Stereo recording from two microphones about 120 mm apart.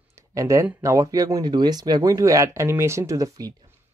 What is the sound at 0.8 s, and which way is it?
Speech, 30° right (ahead or behind).